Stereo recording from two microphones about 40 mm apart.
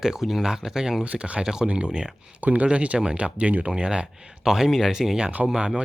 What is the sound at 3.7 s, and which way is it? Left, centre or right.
Speech, right.